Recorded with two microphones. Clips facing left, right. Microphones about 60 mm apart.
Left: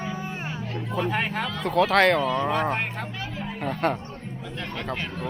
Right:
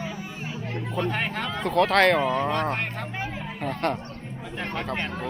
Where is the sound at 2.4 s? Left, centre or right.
Centre.